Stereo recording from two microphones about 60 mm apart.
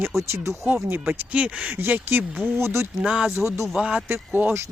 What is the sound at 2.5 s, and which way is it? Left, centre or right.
Speech, right.